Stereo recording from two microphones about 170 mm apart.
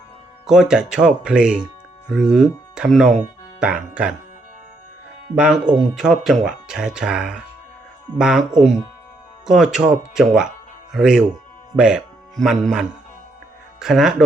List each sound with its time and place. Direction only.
0.4 s speech: 5° right (ahead or behind)
5.3 s speech: 5° right (ahead or behind)